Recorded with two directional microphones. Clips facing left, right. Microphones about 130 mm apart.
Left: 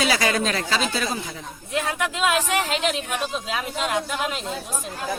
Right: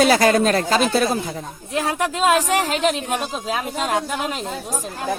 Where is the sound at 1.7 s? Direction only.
35° right (ahead or behind).